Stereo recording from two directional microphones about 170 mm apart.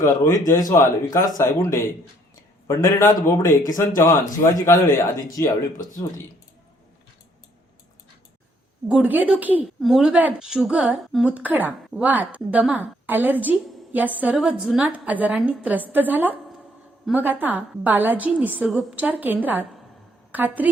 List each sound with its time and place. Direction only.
0.0 s speech: 20° left (ahead or behind)
8.9 s a woman's voice: 10° right (ahead or behind)